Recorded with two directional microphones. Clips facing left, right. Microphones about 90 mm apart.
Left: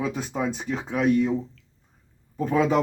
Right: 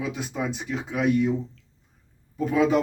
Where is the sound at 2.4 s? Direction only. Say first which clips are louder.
Right 1 dB; 40° left (ahead or behind).